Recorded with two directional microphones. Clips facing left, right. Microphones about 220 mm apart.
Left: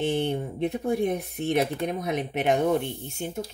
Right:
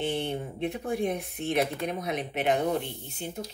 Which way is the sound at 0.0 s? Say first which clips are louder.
Left 4 dB; 40° left (ahead or behind).